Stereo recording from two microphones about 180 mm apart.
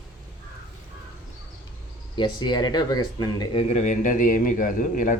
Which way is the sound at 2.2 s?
25° left (ahead or behind).